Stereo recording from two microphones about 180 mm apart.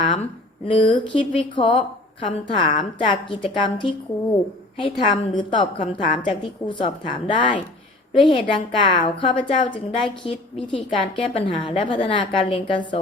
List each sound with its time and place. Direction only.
0.0 s a woman's voice: 30° left (ahead or behind)